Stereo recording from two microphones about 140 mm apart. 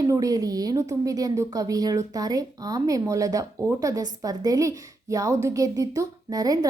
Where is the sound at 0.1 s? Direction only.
25° right (ahead or behind).